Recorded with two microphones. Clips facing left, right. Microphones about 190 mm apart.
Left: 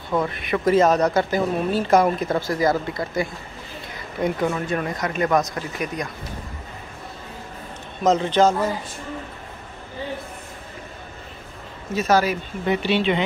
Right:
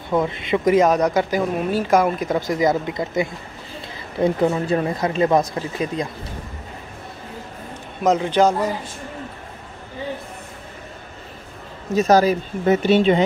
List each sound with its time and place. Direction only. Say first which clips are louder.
0.1 s speech: right 3 dB; 20° right (ahead or behind)
8.0 s speech: right 1 dB; 10° right (ahead or behind)
11.9 s speech: right 4 dB; 40° right (ahead or behind)